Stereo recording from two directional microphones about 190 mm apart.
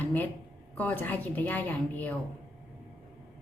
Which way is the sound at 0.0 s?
10° left (ahead or behind).